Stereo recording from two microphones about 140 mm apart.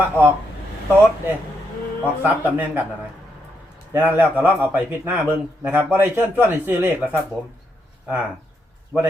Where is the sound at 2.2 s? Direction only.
15° right (ahead or behind).